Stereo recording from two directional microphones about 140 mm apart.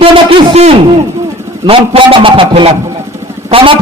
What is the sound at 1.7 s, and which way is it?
A man's voice, 40° right (ahead or behind).